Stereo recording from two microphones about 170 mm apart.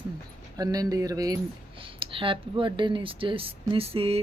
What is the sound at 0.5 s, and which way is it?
Speech, 20° right (ahead or behind).